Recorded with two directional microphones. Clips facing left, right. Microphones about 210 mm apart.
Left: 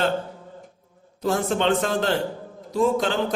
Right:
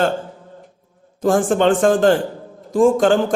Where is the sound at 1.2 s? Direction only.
50° right (ahead or behind).